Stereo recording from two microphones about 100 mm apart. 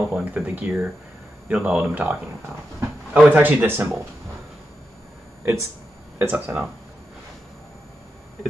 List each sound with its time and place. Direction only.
0.1 s speech: 10° right (ahead or behind)
5.4 s speech: 25° right (ahead or behind)